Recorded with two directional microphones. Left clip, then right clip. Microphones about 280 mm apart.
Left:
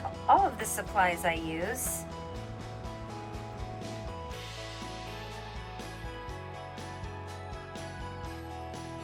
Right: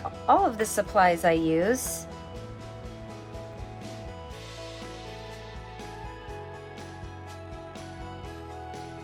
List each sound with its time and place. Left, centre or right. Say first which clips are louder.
0.3 s a woman's voice: right 2 dB; centre